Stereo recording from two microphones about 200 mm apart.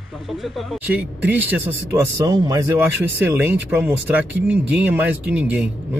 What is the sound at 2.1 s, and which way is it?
Speech, 20° right (ahead or behind).